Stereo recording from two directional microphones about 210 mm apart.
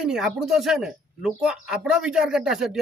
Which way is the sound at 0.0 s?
Centre (ahead or behind).